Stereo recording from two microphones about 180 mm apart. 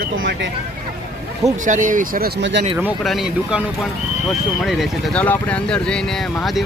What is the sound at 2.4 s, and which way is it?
Speech, 75° right (ahead or behind).